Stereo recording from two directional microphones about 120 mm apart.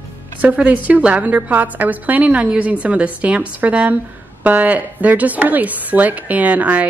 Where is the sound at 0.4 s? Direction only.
15° right (ahead or behind).